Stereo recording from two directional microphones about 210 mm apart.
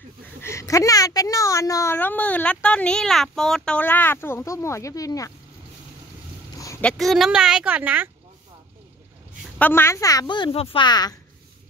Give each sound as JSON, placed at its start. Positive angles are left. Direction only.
{"t": 0.4, "sound": "a woman's voice", "side_deg": 15}
{"t": 6.6, "sound": "speech", "side_deg": 10}
{"t": 9.6, "sound": "speech", "side_deg": 10}